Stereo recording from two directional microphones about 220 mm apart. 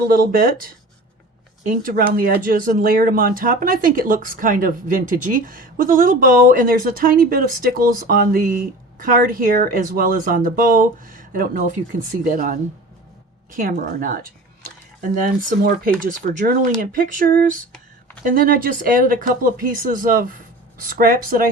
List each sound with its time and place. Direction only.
0.1 s speech: 40° right (ahead or behind)